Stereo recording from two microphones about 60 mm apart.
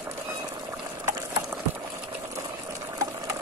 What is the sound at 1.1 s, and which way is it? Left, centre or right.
Horse, right.